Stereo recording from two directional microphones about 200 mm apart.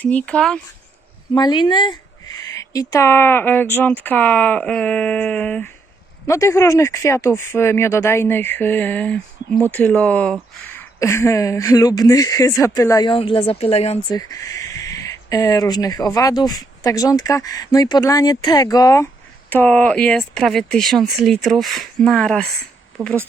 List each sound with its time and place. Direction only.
0.0 s speech: 5° left (ahead or behind)
1.3 s speech: 20° left (ahead or behind)
14.1 s speech: 15° left (ahead or behind)